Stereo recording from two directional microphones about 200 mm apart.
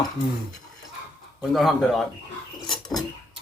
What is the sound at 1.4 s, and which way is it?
Speech, centre (ahead or behind).